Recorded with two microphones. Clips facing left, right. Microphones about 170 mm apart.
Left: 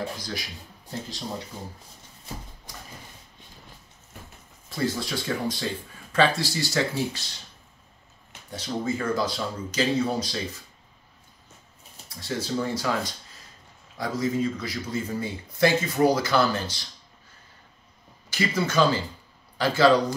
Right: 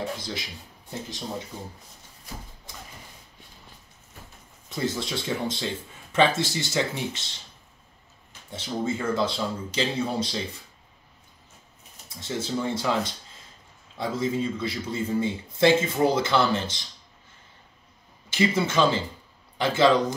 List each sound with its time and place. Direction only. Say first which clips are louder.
0.2 s a man's voice: even; 25° right (ahead or behind)
4.6 s a man's voice: left 1 dB; 20° right (ahead or behind)
8.5 s a man's voice: even; 25° right (ahead or behind)
12.1 s a man's voice: even; 20° right (ahead or behind)
18.3 s a man's voice: right 2 dB; 25° right (ahead or behind)